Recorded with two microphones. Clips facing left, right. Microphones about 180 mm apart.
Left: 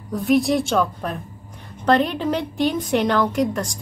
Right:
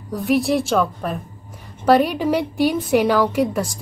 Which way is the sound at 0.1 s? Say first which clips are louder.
Even; centre (ahead or behind).